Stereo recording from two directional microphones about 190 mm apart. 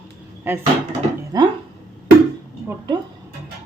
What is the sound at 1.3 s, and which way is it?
Speech, 20° right (ahead or behind).